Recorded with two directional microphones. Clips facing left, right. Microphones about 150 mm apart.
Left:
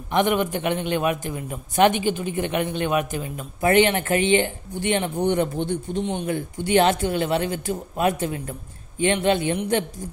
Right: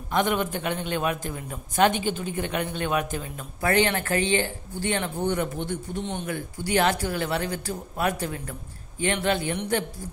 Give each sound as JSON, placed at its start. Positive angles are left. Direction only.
{"t": 0.1, "sound": "a man's voice", "side_deg": 15}